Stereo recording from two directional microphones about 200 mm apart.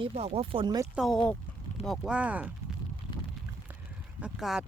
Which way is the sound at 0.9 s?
Centre (ahead or behind).